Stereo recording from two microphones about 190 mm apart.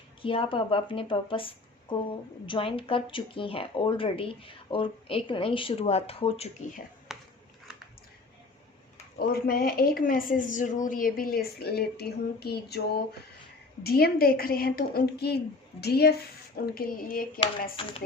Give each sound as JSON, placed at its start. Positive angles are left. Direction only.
{"t": 0.2, "sound": "speech", "side_deg": 30}
{"t": 7.1, "sound": "a sound", "side_deg": 0}
{"t": 9.1, "sound": "a woman's voice", "side_deg": 50}
{"t": 13.8, "sound": "a woman's voice", "side_deg": 55}